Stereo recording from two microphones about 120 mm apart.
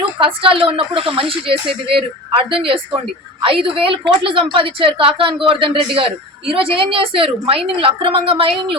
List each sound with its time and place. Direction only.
0.2 s speech: 50° right (ahead or behind)